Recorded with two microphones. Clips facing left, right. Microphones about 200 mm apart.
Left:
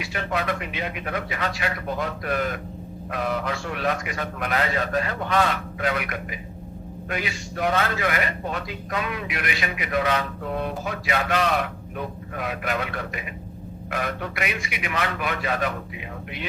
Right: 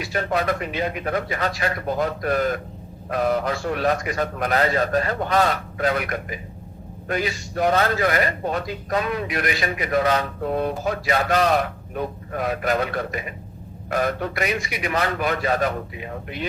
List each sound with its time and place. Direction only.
0.0 s a man's voice: 40° right (ahead or behind)